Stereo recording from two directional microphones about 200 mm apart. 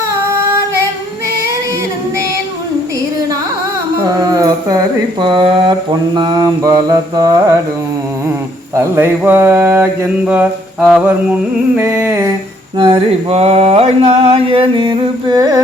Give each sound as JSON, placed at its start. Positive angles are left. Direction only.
{"t": 3.9, "sound": "speech", "side_deg": -20}
{"t": 8.7, "sound": "mantra", "side_deg": -15}
{"t": 12.8, "sound": "speech", "side_deg": -25}